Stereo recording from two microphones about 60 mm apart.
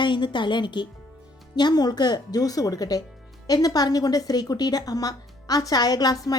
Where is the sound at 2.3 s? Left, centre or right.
Left.